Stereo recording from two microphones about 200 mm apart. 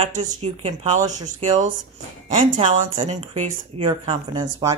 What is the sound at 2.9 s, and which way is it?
Speech, 30° right (ahead or behind).